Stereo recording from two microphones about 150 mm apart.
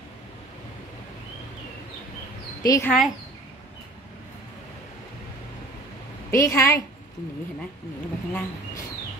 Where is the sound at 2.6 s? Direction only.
20° left (ahead or behind).